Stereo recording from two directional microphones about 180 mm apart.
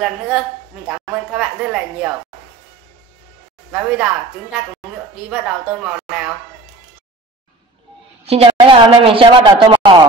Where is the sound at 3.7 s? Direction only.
5° right (ahead or behind).